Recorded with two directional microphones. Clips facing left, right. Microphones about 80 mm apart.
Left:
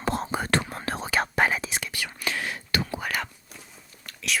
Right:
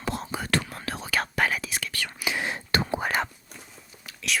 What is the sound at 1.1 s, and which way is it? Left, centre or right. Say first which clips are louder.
Whispering: left 2 dB; left.